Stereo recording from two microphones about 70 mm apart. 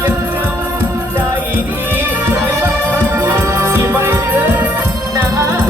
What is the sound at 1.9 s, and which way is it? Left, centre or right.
Music, right.